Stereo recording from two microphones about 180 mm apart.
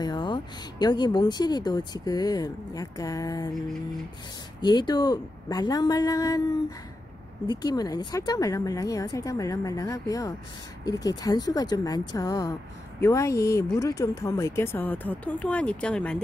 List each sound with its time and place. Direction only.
0.0 s speech: 25° left (ahead or behind)
4.6 s speech: 25° left (ahead or behind)
7.4 s speech: 20° left (ahead or behind); by 16.2 s 5° left (ahead or behind)